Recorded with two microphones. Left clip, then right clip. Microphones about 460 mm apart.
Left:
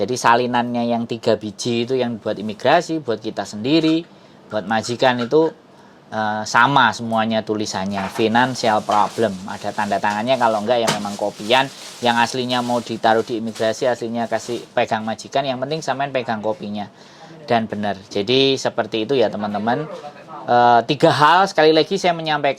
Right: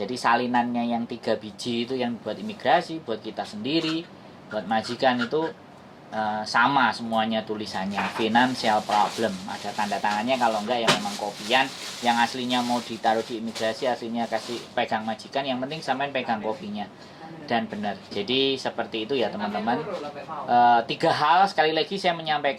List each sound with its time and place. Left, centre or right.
0.0 s speech: left
12.0 s speech: left